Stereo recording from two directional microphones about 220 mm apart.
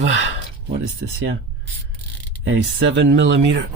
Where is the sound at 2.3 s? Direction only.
60° right (ahead or behind).